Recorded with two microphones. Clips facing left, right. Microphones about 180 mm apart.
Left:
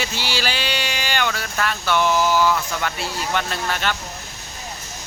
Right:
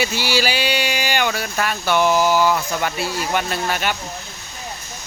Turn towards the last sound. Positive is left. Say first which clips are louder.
# right 2 dB
turn(degrees=-10)  # may be behind; listen again after turning